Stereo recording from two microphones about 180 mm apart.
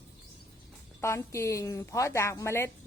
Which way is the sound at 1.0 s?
15° left (ahead or behind).